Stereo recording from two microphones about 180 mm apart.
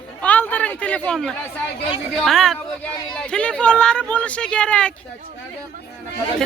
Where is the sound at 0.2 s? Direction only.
10° left (ahead or behind).